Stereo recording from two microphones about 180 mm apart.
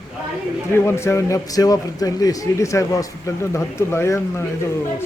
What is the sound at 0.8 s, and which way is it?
A man's voice, 15° left (ahead or behind).